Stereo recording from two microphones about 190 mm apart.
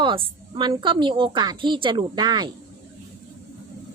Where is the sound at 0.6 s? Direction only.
25° right (ahead or behind).